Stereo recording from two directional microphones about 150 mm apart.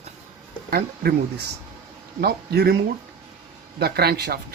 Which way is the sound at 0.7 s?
90° right.